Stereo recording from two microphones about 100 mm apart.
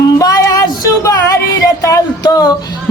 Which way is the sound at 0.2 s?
35° left (ahead or behind).